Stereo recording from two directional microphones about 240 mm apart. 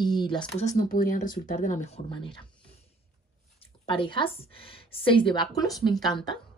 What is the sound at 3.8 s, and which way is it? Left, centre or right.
A woman's voice, left.